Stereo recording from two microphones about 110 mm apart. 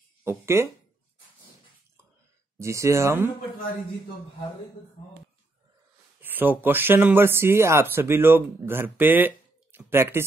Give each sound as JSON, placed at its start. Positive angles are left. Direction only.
{"t": 0.2, "sound": "speech", "side_deg": -25}
{"t": 2.6, "sound": "speech", "side_deg": -25}
{"t": 6.2, "sound": "speech", "side_deg": -15}